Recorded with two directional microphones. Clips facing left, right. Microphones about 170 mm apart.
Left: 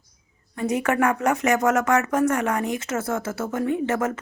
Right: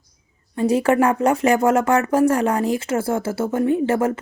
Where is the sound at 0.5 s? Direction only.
30° right (ahead or behind).